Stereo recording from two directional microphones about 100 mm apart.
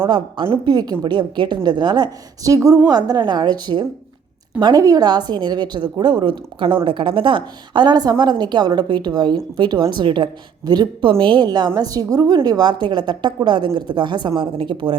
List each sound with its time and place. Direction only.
0.4 s a woman's voice: 60° right (ahead or behind)
0.7 s a woman's voice: 40° right (ahead or behind)
2.4 s a woman's voice: 35° right (ahead or behind); by 14.9 s 55° right (ahead or behind)